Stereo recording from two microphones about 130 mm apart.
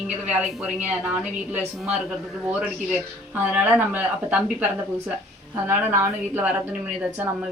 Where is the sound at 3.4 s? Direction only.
10° right (ahead or behind).